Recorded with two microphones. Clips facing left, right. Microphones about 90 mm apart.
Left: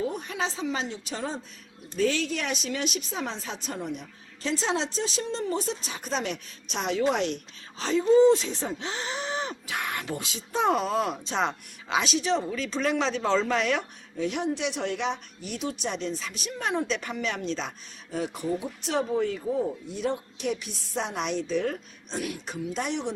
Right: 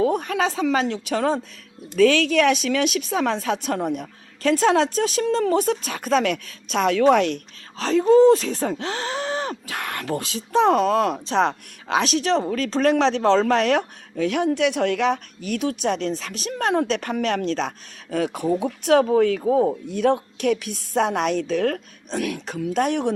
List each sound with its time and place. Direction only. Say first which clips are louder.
0.0 s speech: right 9 dB; 70° right (ahead or behind)
2.0 s speech: right 10 dB; 90° right; by 11.1 s 60° right (ahead or behind)
11.1 s speech: right 7 dB; 40° right (ahead or behind)
13.1 s speech: right 7 dB; 70° right (ahead or behind); by 17.7 s 50° right (ahead or behind)
18.1 s speech: right 7 dB; 70° right (ahead or behind); by 23.1 s 55° right (ahead or behind)